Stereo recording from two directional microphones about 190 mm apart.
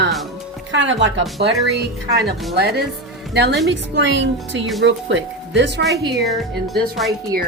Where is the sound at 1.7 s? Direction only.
60° right (ahead or behind).